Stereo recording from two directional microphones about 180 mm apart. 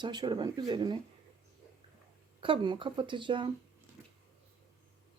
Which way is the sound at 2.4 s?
25° right (ahead or behind).